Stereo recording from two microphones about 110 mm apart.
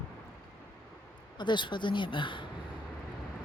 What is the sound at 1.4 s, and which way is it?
Speech, 45° left (ahead or behind).